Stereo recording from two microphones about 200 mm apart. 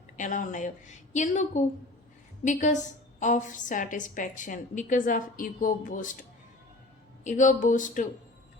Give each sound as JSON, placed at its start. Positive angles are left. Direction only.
{"t": 0.2, "sound": "a woman's voice", "side_deg": 40}
{"t": 7.3, "sound": "a woman's voice", "side_deg": 40}